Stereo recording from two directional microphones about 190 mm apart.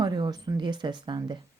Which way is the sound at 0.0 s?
20° right (ahead or behind).